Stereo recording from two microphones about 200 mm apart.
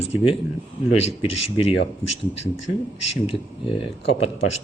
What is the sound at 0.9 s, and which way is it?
Speech, 30° left (ahead or behind).